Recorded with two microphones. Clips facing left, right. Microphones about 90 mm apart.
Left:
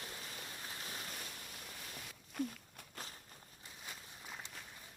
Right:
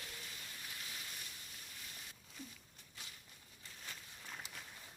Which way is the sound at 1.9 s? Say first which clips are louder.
Left 17 dB; 65° left (ahead or behind).